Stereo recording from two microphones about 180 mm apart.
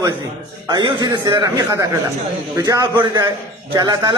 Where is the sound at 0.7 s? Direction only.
25° right (ahead or behind).